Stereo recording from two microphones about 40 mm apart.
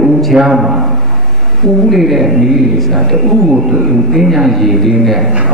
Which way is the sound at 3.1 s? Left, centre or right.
Centre.